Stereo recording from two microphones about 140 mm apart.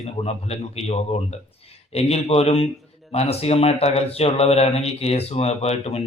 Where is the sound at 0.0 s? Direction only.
45° left (ahead or behind).